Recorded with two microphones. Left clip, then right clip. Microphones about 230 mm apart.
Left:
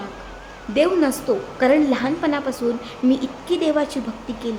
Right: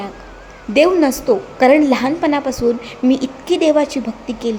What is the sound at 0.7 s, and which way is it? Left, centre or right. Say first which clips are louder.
A woman's voice: right 6 dB; centre.